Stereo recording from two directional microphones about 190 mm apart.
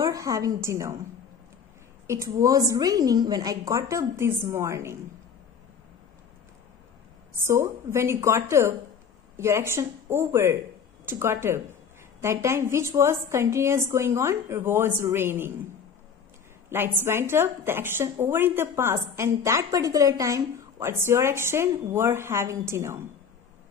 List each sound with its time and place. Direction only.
0.0 s a woman's voice: 20° right (ahead or behind)
2.0 s a woman's voice: 15° right (ahead or behind)
7.4 s a woman's voice: 15° right (ahead or behind)
16.6 s a woman's voice: 10° right (ahead or behind)